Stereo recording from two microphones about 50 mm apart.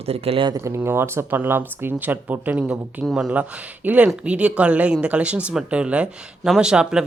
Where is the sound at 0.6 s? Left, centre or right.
Right.